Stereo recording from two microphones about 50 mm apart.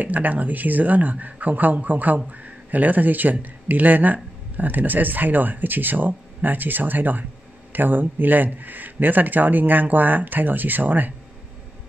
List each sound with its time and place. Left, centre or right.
0.0 s speech: right